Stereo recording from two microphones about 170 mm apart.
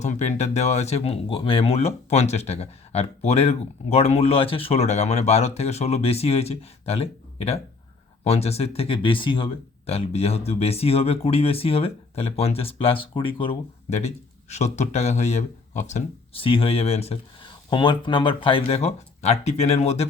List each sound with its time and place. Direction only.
0.0 s speech: 40° left (ahead or behind)